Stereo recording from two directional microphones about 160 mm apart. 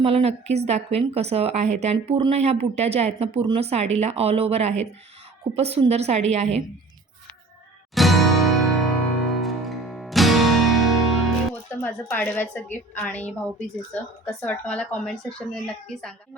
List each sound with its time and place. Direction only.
0.0 s a woman's voice: 40° right (ahead or behind)
2.1 s speech: 30° right (ahead or behind)
2.4 s a woman's voice: 45° right (ahead or behind)
7.9 s music: centre (ahead or behind)
11.7 s a woman's voice: 10° left (ahead or behind)